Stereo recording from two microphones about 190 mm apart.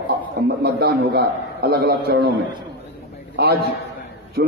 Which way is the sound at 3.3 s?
60° right (ahead or behind).